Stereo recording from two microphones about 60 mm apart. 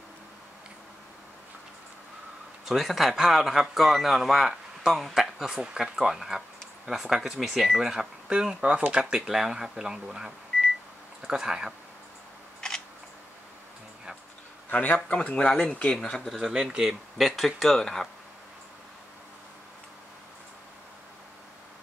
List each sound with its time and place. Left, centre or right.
2.6 s a man's voice: centre
12.5 s camera: centre
15.0 s speech: centre
16.3 s speech: centre
17.2 s a man's voice: centre